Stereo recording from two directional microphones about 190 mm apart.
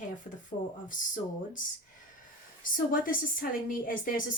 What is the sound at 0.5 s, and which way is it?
Speech, 40° left (ahead or behind).